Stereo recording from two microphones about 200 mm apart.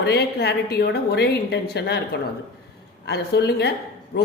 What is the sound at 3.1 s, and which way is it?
Speech, 55° left (ahead or behind).